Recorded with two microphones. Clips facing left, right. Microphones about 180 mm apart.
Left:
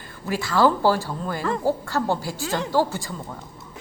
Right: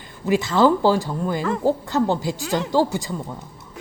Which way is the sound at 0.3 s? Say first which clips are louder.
Right 3 dB; 20° right (ahead or behind).